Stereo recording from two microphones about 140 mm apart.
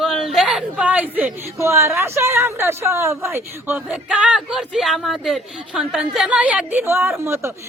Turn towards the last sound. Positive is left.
turn(degrees=-20)  # may be behind; listen again after turning